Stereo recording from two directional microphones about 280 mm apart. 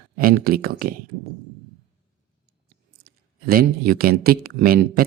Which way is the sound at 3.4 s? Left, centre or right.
Right.